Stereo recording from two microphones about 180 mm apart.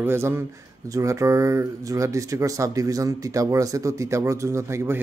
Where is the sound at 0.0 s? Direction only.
15° right (ahead or behind).